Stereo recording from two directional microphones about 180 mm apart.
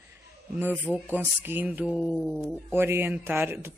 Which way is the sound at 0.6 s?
10° right (ahead or behind).